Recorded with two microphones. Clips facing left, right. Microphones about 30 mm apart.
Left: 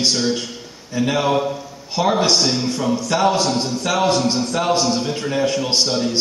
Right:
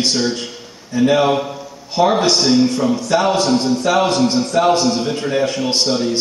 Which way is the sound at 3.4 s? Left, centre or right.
Right.